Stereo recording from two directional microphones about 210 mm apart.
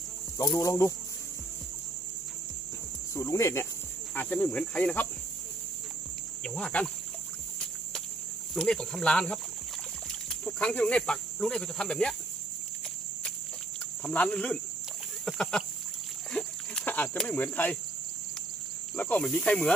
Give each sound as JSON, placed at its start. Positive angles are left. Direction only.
{"t": 0.3, "sound": "speech", "side_deg": 15}
{"t": 3.2, "sound": "speech", "side_deg": 15}
{"t": 6.4, "sound": "speech", "side_deg": 5}
{"t": 8.5, "sound": "speech", "side_deg": 5}
{"t": 14.0, "sound": "speech", "side_deg": 5}
{"t": 15.2, "sound": "a sound", "side_deg": 0}
{"t": 16.3, "sound": "cricket", "side_deg": 5}
{"t": 18.9, "sound": "speech", "side_deg": 5}